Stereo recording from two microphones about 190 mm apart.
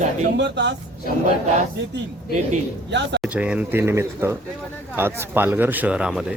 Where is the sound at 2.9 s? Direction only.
65° right (ahead or behind).